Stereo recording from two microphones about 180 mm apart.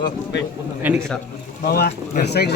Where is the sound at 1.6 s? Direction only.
55° left (ahead or behind).